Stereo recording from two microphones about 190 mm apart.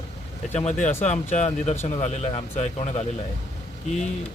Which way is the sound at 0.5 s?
35° left (ahead or behind).